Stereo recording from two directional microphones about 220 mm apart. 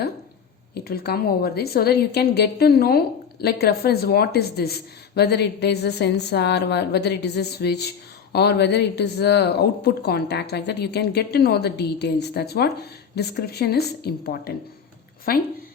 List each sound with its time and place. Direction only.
0.7 s a woman's voice: 45° left (ahead or behind)